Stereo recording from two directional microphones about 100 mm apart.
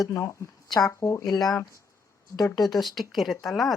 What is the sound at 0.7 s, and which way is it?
Speech, 35° left (ahead or behind).